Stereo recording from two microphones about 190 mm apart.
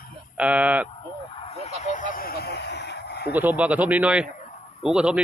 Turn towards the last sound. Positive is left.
turn(degrees=-5)  # may be behind; listen again after turning